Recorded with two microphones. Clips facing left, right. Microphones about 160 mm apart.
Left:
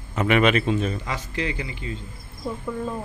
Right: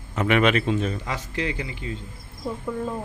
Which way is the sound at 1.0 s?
55° right (ahead or behind).